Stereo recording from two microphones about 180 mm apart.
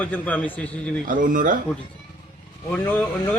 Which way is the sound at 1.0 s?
45° right (ahead or behind).